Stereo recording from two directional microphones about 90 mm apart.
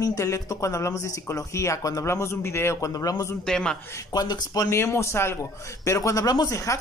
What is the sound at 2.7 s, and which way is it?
Speech, 40° left (ahead or behind).